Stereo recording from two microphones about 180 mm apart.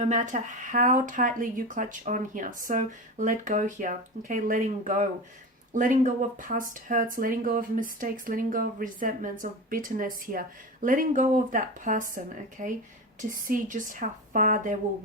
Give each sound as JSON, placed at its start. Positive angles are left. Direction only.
{"t": 0.0, "sound": "speech", "side_deg": -40}